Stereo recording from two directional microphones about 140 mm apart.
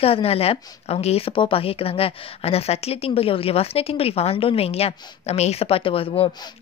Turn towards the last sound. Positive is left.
turn(degrees=40)  # may be behind; listen again after turning